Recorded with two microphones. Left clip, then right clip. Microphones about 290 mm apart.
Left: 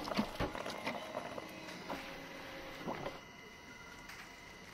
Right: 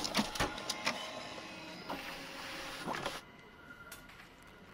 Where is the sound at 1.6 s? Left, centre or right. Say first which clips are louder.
Right 1 dB; centre; by 3.2 s right.